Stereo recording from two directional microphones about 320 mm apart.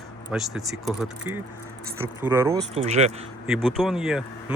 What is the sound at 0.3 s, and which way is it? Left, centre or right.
Speech, centre.